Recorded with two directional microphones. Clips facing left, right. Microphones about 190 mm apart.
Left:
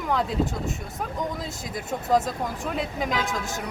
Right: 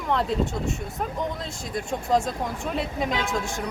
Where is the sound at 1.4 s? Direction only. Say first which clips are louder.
Right 2 dB; 5° left (ahead or behind).